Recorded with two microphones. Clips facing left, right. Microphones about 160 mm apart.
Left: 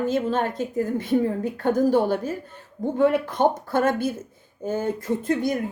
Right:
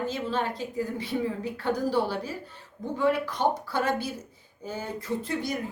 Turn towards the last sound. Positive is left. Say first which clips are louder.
# left 7 dB
turn(degrees=50)  # may be behind; listen again after turning